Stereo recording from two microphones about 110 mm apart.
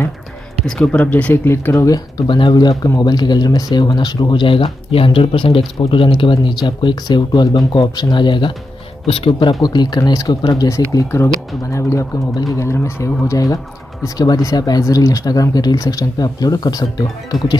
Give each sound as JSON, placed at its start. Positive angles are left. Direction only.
{"t": 0.7, "sound": "speech", "side_deg": 10}
{"t": 2.1, "sound": "speech", "side_deg": 45}
{"t": 2.5, "sound": "speech", "side_deg": 35}
{"t": 9.0, "sound": "speech", "side_deg": 55}